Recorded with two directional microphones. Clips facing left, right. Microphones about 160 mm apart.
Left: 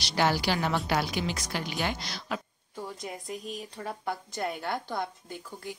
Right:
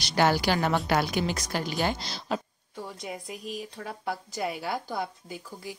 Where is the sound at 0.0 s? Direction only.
50° right (ahead or behind); by 2.4 s 30° right (ahead or behind).